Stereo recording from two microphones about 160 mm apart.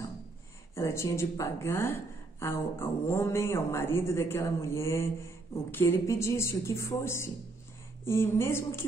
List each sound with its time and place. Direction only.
0.7 s speech: 15° left (ahead or behind)